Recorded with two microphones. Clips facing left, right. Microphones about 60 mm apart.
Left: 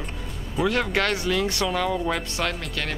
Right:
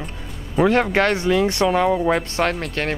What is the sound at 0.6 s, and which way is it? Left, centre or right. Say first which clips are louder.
Speech: right 6 dB; right.